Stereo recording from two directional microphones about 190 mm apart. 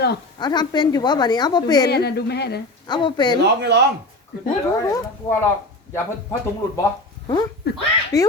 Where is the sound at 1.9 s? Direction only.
60° left (ahead or behind).